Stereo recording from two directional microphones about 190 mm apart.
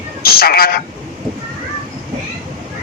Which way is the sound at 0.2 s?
55° left (ahead or behind).